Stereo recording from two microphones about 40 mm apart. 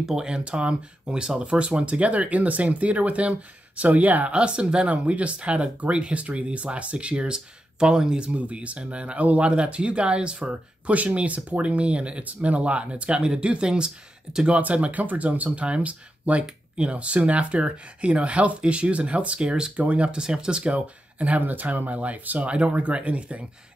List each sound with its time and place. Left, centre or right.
0.0 s speech: centre
0.4 s speech: right
8.2 s speech: right
14.5 s speech: right
20.2 s speech: centre
20.7 s speech: right